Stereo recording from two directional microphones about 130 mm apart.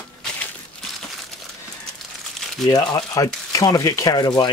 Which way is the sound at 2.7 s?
30° left (ahead or behind).